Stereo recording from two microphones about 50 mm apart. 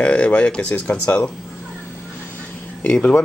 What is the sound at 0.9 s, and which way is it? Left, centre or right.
Speech, left.